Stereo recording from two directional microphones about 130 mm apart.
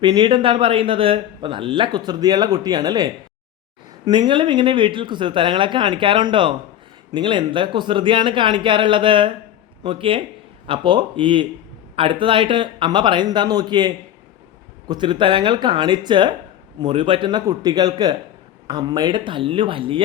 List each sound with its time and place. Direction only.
0.0 s a man's voice: 35° right (ahead or behind)